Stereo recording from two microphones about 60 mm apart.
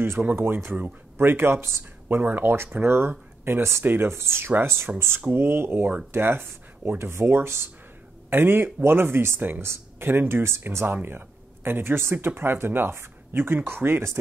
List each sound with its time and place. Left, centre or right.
0.0 s speech: right